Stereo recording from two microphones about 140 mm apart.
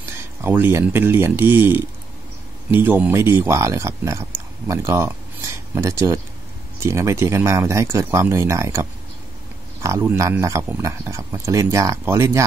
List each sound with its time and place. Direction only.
0.2 s speech: 15° right (ahead or behind)